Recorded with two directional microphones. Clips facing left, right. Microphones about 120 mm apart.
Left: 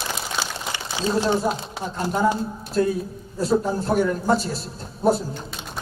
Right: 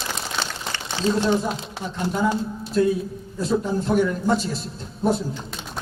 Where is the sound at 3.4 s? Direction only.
40° left (ahead or behind).